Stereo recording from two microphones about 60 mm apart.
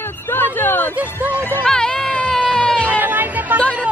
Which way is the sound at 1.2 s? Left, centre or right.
Right.